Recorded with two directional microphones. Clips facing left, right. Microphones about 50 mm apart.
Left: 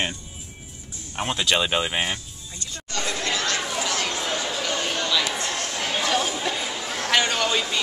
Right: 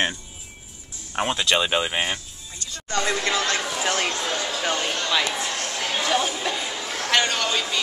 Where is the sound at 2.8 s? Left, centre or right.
Right.